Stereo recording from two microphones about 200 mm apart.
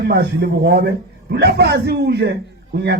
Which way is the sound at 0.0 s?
55° right (ahead or behind).